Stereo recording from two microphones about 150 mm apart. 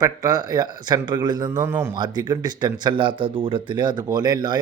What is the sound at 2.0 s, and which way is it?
Speech, 30° right (ahead or behind).